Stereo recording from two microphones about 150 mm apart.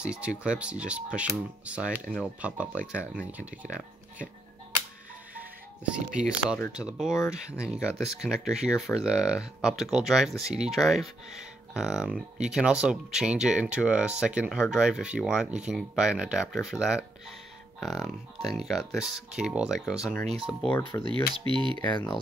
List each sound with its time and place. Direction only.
0.0 s speech: 5° right (ahead or behind)
5.3 s music: 10° right (ahead or behind)
6.7 s speech: 5° right (ahead or behind)
20.9 s speech: 20° left (ahead or behind)
21.5 s speech: 35° right (ahead or behind)
21.9 s speech: 30° left (ahead or behind)